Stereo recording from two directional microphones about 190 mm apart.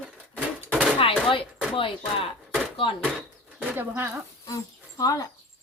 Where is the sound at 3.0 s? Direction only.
5° right (ahead or behind).